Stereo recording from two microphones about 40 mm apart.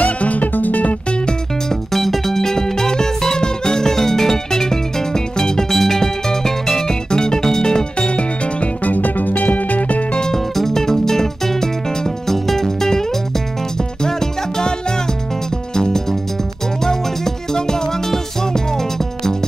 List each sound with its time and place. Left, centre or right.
0.0 s music: left
1.9 s music: centre; by 8.6 s left
8.8 s music: left
10.1 s music: centre
14.0 s music: centre
15.7 s music: centre